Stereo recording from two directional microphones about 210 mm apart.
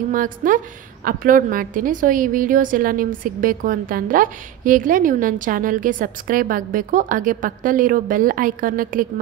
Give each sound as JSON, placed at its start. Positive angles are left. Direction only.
{"t": 0.1, "sound": "a woman's voice", "side_deg": -40}